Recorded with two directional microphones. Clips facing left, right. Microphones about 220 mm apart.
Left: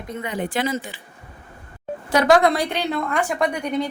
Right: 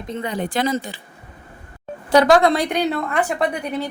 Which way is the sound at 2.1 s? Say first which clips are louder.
Right 2 dB; 35° right (ahead or behind).